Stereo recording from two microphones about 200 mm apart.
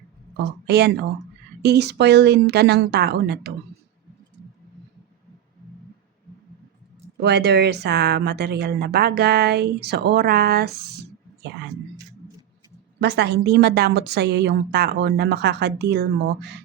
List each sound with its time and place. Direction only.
0.3 s a woman's voice: 55° right (ahead or behind)
7.2 s a woman's voice: 55° right (ahead or behind)
13.0 s a woman's voice: 55° right (ahead or behind)